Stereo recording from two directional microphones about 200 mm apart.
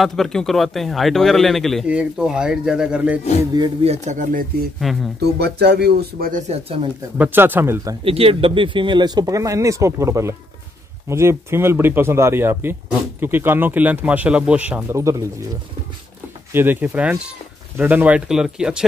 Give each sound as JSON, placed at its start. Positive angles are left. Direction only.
{"t": 0.0, "sound": "speech", "side_deg": 0}
{"t": 3.5, "sound": "speech", "side_deg": -25}
{"t": 4.7, "sound": "speech", "side_deg": 0}
{"t": 5.4, "sound": "speech", "side_deg": -55}
{"t": 7.2, "sound": "speech", "side_deg": -10}
{"t": 8.0, "sound": "speech", "side_deg": -30}
{"t": 16.5, "sound": "speech", "side_deg": -10}